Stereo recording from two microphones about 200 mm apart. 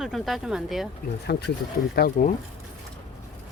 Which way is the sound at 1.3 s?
55° left (ahead or behind).